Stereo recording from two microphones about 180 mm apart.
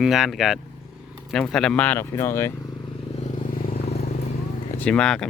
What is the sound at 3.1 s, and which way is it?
Vehicle, 40° left (ahead or behind).